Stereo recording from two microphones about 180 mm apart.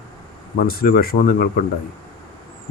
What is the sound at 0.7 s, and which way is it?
Speech, 55° left (ahead or behind).